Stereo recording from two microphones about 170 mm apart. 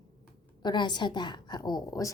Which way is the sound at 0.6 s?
25° left (ahead or behind).